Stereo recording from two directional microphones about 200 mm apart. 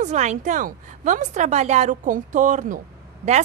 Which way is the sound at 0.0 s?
35° right (ahead or behind).